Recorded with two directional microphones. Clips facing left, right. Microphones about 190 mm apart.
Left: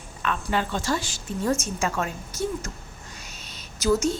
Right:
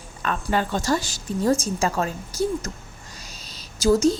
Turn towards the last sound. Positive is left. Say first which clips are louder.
# right 4 dB
turn(degrees=-35)  # may be behind; listen again after turning